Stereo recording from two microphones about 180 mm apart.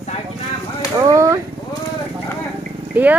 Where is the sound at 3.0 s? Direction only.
10° right (ahead or behind).